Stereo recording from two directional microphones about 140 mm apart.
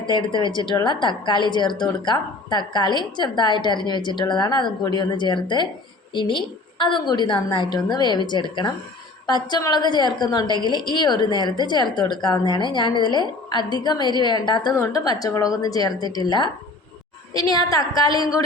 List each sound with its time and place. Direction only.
0.0 s a woman's voice: 35° left (ahead or behind)